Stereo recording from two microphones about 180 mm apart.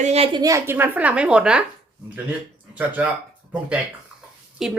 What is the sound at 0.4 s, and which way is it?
A woman's voice, 15° right (ahead or behind).